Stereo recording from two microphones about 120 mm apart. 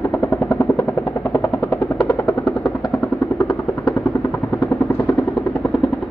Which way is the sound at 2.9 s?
25° left (ahead or behind).